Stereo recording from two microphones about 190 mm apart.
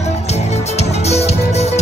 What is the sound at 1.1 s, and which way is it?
Music, 35° left (ahead or behind).